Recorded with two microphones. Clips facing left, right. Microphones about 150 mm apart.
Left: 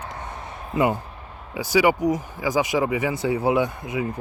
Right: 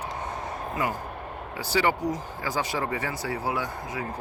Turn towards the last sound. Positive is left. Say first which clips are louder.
# left 8 dB
turn(degrees=20)  # may be behind; listen again after turning